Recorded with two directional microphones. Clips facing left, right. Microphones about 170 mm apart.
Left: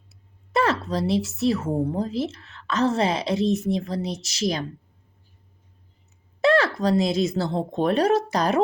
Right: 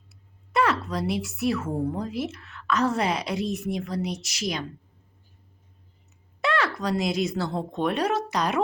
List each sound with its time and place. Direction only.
0.5 s a woman's voice: 30° left (ahead or behind)
6.4 s speech: 30° left (ahead or behind)